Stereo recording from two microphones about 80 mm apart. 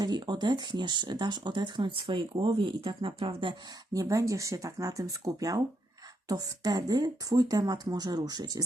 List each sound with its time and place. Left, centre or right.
0.0 s speech: right
3.9 s speech: right